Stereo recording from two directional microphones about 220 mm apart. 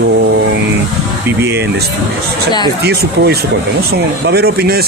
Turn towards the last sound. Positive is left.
turn(degrees=-45)  # may be behind; listen again after turning